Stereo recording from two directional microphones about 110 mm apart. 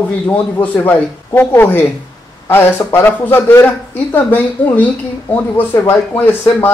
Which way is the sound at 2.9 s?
20° left (ahead or behind).